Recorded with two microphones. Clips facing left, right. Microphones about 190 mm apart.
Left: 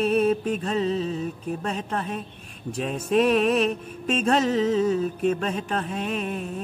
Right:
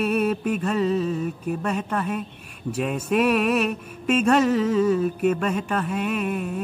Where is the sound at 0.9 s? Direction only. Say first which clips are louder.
Right 3 dB; 55° right (ahead or behind).